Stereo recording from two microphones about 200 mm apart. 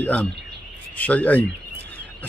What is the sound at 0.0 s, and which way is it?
A man's voice, 10° left (ahead or behind).